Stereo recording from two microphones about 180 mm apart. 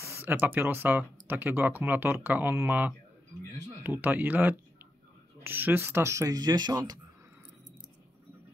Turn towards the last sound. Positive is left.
turn(degrees=-20)  # may be behind; listen again after turning